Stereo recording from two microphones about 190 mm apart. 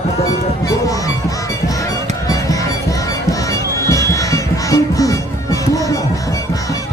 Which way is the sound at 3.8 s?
15° left (ahead or behind).